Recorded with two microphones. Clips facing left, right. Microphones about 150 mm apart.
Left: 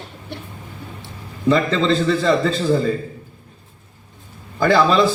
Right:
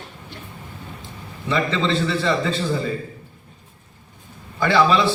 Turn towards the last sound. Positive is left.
turn(degrees=40)  # may be behind; listen again after turning